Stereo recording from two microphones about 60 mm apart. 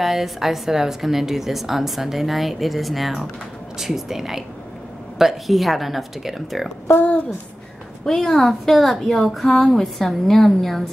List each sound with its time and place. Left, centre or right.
0.0 s a woman's voice: centre
6.9 s a child's voice: left
8.0 s a woman's voice: centre